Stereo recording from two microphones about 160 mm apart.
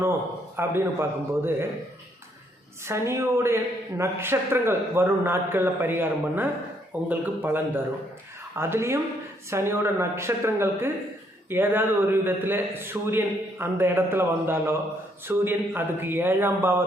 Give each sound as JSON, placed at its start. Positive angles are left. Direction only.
{"t": 0.5, "sound": "a man's voice", "side_deg": -15}
{"t": 2.8, "sound": "a man's voice", "side_deg": -15}